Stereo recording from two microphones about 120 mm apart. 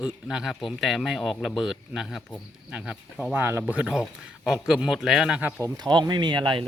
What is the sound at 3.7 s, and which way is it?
A man's voice, 10° right (ahead or behind).